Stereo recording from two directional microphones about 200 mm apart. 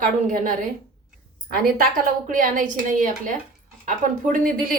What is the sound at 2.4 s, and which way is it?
A woman's voice, 40° right (ahead or behind).